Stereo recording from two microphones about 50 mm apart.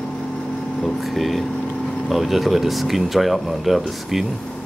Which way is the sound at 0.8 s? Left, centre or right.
Centre.